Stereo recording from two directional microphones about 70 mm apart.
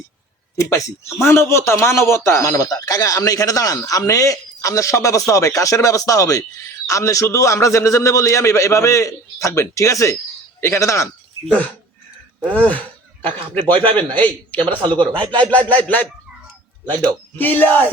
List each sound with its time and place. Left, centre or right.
0.5 s a man's voice: left
12.5 s a man's voice: left
17.3 s a man's voice: left